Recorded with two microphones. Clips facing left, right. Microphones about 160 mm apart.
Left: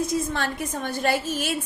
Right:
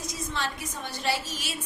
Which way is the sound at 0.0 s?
55° left (ahead or behind).